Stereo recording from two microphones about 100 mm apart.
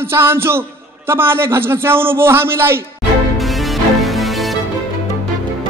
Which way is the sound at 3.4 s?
Centre (ahead or behind).